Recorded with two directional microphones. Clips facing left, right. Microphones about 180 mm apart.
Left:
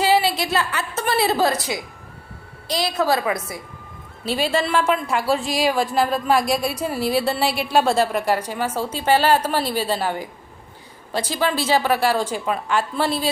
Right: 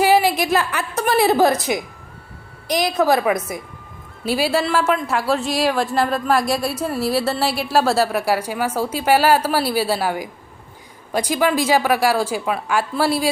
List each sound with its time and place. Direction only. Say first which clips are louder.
0.0 s a woman's voice: right 3 dB; 15° right (ahead or behind)
4.3 s a woman's voice: right 2 dB; 10° right (ahead or behind)